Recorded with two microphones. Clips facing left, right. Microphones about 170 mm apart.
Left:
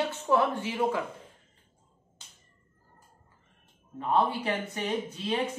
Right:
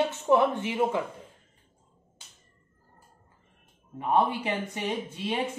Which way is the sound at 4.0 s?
15° right (ahead or behind).